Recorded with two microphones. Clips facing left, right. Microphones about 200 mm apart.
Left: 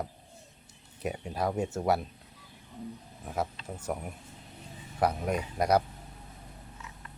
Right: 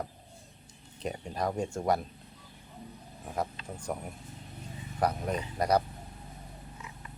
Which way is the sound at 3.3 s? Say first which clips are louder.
Left 1 dB; 5° left (ahead or behind).